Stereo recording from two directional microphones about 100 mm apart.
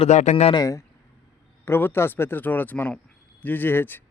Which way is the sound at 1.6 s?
20° left (ahead or behind).